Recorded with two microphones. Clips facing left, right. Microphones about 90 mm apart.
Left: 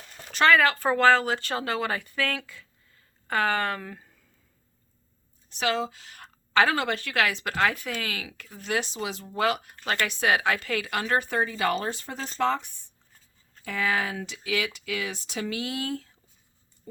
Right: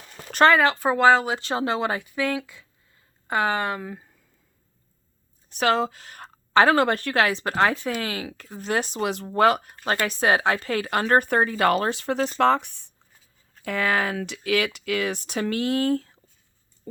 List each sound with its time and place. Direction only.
0.4 s speech: 25° right (ahead or behind)
5.5 s speech: 50° right (ahead or behind)
8.9 s speech: 60° right (ahead or behind)
9.4 s speech: 45° right (ahead or behind)
11.0 s speech: 55° right (ahead or behind); by 12.3 s 80° right
12.4 s speech: 65° right (ahead or behind)
13.7 s speech: 60° right (ahead or behind)
16.9 s a sound: 50° right (ahead or behind)